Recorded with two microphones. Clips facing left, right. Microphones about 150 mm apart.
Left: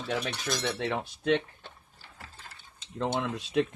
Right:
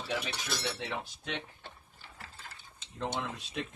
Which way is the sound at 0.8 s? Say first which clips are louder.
Left 7 dB; 60° left (ahead or behind).